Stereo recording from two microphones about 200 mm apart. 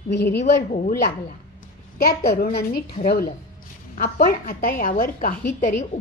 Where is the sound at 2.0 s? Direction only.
50° left (ahead or behind).